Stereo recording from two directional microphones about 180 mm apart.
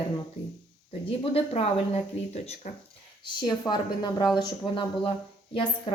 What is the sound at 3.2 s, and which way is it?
A woman's voice, 25° left (ahead or behind).